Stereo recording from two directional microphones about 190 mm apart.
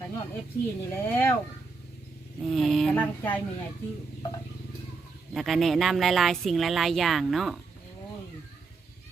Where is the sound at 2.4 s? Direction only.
Centre (ahead or behind).